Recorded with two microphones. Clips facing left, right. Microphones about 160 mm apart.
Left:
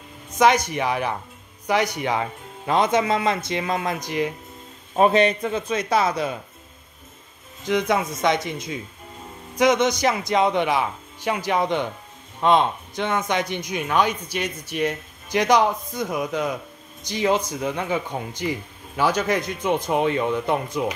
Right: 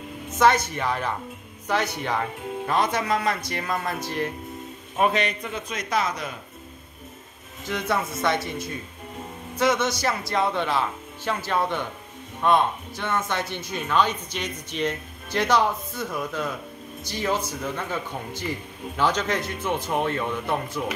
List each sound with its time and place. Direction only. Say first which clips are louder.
0.4 s speech: left 2 dB; 15° left (ahead or behind)
4.9 s speech: left 6 dB; 30° left (ahead or behind)
7.6 s speech: left 5 dB; 15° left (ahead or behind)